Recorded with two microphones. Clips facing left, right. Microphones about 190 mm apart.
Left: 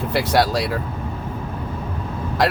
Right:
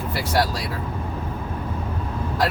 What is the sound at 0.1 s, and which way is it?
Speech, 70° left (ahead or behind).